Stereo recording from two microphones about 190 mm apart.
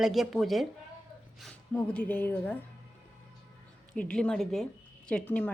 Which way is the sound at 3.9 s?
5° left (ahead or behind).